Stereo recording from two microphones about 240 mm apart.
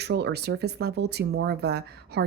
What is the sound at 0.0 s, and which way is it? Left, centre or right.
A woman's voice, right.